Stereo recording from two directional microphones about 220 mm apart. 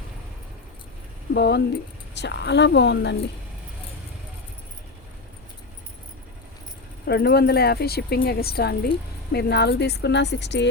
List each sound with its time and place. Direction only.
1.3 s a woman's voice: 50° left (ahead or behind)
7.1 s a woman's voice: 45° left (ahead or behind)